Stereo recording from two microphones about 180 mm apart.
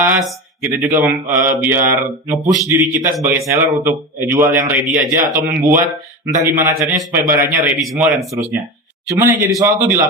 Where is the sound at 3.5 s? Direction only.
15° right (ahead or behind).